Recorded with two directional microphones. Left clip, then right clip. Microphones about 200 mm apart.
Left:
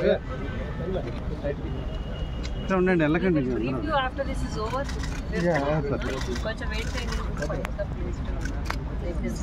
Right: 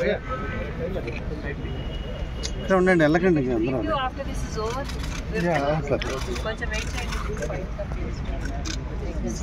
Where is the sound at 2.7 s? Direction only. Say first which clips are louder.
Right 4 dB; 25° right (ahead or behind).